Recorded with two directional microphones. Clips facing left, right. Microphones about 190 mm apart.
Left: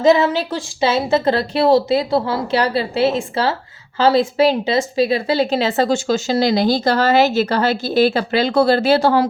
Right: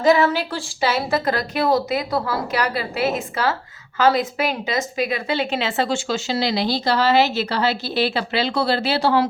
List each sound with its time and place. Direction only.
0.0 s a woman's voice: 25° left (ahead or behind); by 9.3 s 45° left (ahead or behind)